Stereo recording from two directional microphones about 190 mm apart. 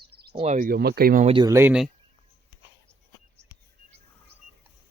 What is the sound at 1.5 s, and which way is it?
Speech, 5° right (ahead or behind).